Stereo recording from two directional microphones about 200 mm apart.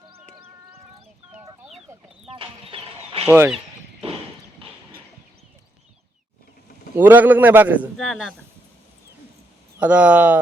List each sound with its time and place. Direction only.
2.2 s a sound: 25° right (ahead or behind)
3.2 s a man's voice: 10° right (ahead or behind)
6.9 s a man's voice: 10° right (ahead or behind)
7.9 s speech: centre (ahead or behind)
9.8 s a man's voice: 5° right (ahead or behind)